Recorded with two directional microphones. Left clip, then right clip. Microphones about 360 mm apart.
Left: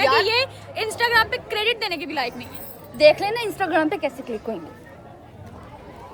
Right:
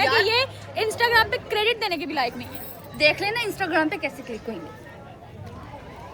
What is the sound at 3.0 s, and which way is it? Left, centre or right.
Speech, left.